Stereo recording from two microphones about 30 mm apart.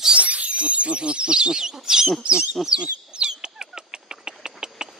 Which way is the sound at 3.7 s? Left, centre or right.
Right.